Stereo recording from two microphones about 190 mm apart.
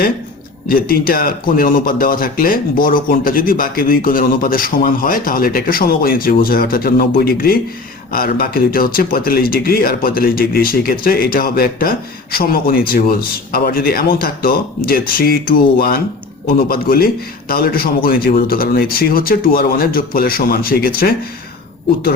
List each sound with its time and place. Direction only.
0.7 s speech: 50° left (ahead or behind)